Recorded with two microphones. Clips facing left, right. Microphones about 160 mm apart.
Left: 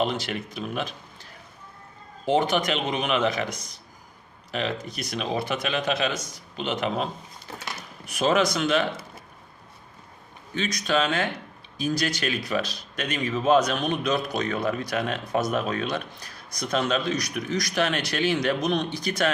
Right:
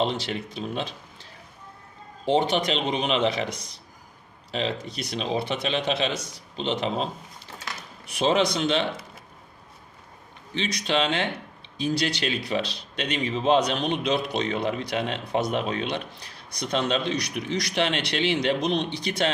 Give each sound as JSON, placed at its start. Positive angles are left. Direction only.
{"t": 0.0, "sound": "a man's voice", "side_deg": -30}
{"t": 2.3, "sound": "a man's voice", "side_deg": -30}
{"t": 10.6, "sound": "a man's voice", "side_deg": -30}